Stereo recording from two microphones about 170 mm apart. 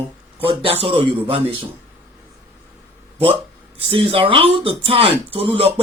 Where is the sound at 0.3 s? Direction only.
35° right (ahead or behind).